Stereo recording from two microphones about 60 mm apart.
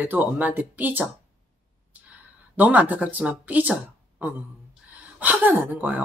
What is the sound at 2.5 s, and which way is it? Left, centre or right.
Speech, right.